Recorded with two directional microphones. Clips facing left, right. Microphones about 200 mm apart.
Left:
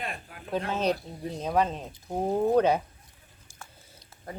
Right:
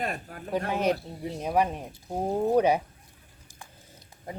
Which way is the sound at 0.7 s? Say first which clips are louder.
Right 1 dB; 15° right (ahead or behind).